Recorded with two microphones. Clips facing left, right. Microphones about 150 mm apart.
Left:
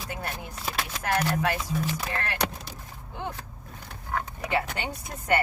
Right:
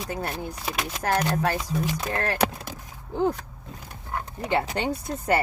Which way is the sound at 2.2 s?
40° right (ahead or behind).